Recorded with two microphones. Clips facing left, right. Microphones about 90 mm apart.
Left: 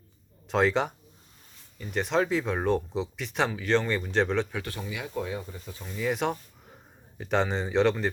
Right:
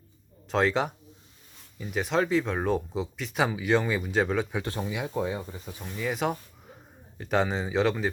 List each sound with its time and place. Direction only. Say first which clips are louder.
0.4 s speech: left 1 dB; centre (ahead or behind)
4.5 s speech: right 4 dB; 25° right (ahead or behind)
6.0 s speech: left 1 dB; centre (ahead or behind)